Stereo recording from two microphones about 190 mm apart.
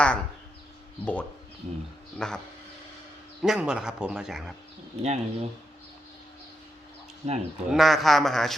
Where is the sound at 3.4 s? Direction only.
5° right (ahead or behind).